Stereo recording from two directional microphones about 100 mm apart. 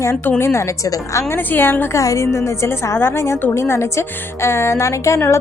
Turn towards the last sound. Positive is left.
turn(degrees=30)  # may be behind; listen again after turning